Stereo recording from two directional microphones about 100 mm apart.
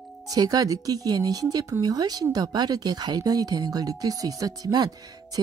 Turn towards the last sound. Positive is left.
turn(degrees=-40)  # may be behind; listen again after turning